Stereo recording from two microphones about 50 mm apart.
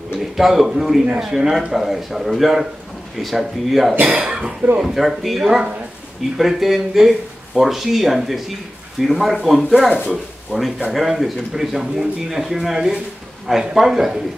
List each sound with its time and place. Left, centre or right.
0.2 s speech: centre
4.0 s speech: right
4.8 s speech: centre